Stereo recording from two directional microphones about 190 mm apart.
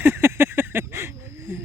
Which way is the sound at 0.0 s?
10° right (ahead or behind).